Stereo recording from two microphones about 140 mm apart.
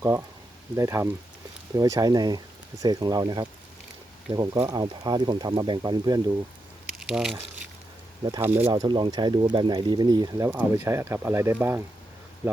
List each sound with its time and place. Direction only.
0.0 s speech: 20° right (ahead or behind)
7.0 s speech: 5° right (ahead or behind)
8.4 s speech: 15° right (ahead or behind)
8.7 s speech: 30° right (ahead or behind)